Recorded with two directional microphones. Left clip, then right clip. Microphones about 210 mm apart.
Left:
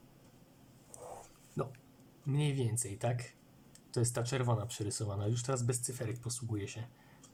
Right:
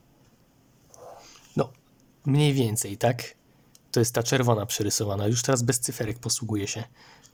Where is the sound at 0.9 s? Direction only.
5° right (ahead or behind).